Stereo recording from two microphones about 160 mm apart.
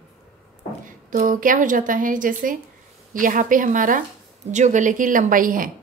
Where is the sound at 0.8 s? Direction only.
55° right (ahead or behind).